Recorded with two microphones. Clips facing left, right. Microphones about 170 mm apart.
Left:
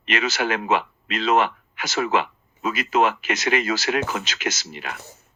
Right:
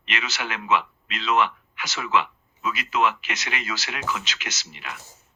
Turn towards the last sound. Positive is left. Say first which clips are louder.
# left 8 dB
turn(degrees=45)  # may be behind; listen again after turning